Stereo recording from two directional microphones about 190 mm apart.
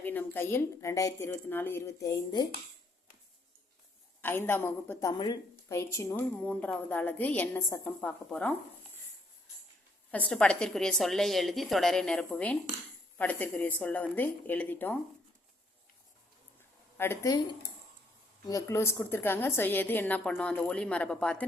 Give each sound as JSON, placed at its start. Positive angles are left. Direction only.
{"t": 0.0, "sound": "a woman's voice", "side_deg": 10}
{"t": 4.2, "sound": "a woman's voice", "side_deg": 10}
{"t": 10.1, "sound": "a woman's voice", "side_deg": 5}
{"t": 17.0, "sound": "a woman's voice", "side_deg": 15}
{"t": 18.4, "sound": "a woman's voice", "side_deg": 15}